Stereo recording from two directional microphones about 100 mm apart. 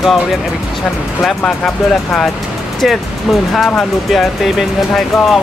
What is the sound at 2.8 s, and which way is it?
Speech, centre (ahead or behind).